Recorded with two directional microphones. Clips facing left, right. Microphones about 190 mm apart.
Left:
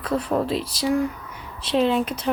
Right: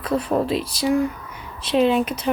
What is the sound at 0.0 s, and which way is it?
Speech, 15° right (ahead or behind).